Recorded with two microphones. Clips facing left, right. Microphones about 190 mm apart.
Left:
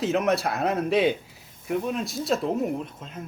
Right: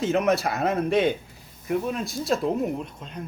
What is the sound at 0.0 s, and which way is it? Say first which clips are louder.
Speech: right 1 dB; centre (ahead or behind).